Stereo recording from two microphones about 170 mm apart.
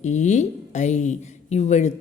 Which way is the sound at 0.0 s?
45° left (ahead or behind).